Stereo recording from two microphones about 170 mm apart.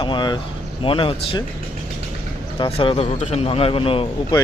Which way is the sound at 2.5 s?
35° left (ahead or behind).